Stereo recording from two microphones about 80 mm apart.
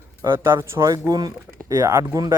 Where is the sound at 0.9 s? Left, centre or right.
Right.